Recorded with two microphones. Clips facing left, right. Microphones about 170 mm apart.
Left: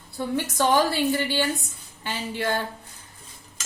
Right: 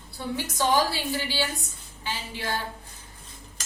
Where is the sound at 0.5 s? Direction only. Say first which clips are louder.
Left 3 dB; 55° left (ahead or behind).